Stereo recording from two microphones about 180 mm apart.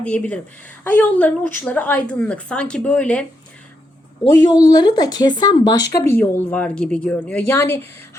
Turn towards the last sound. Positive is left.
turn(degrees=15)  # may be behind; listen again after turning